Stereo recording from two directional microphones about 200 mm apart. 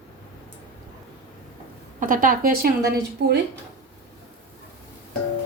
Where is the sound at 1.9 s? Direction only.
45° right (ahead or behind).